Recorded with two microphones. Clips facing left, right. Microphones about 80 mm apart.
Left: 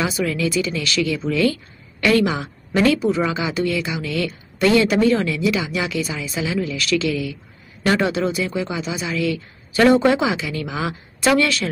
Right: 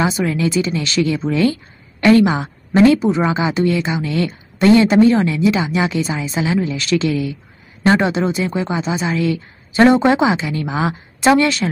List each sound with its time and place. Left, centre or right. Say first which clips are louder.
0.0 s a woman's voice: right 4 dB; right